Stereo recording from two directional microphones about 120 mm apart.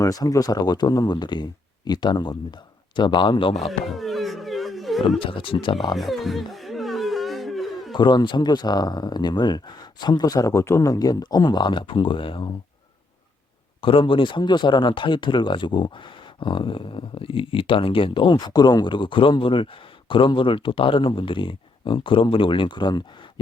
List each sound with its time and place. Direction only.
0.0 s speech: 30° left (ahead or behind); by 3.7 s 50° left (ahead or behind)
3.7 s a sound: centre (ahead or behind)
5.0 s speech: 45° left (ahead or behind)
6.0 s a sound: centre (ahead or behind)
7.9 s speech: 40° left (ahead or behind)
13.8 s speech: 45° left (ahead or behind)